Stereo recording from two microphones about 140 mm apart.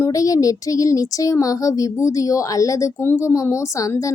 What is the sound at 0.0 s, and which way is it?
Speech, 25° left (ahead or behind).